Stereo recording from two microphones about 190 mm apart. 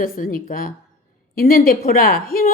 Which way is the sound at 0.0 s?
50° left (ahead or behind).